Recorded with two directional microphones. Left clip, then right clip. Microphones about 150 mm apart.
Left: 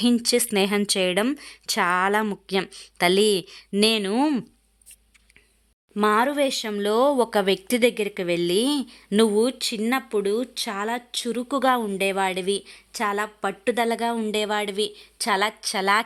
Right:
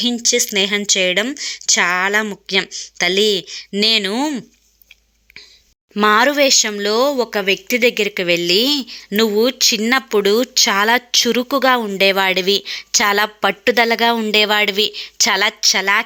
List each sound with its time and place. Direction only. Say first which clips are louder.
0.0 s speech: right 5 dB; 15° left (ahead or behind)
5.9 s speech: right 8 dB; 10° right (ahead or behind)
6.3 s speech: right 10 dB; centre (ahead or behind); by 11.4 s 20° right (ahead or behind)
11.4 s speech: right 7 dB; centre (ahead or behind); by 13.7 s 20° right (ahead or behind)
13.7 s speech: right 9 dB; 5° right (ahead or behind)
15.4 s speech: right 9 dB; centre (ahead or behind)